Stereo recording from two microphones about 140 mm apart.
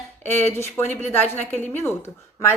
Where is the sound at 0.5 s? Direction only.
15° left (ahead or behind).